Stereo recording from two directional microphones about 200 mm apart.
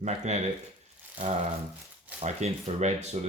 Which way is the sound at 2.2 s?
35° right (ahead or behind).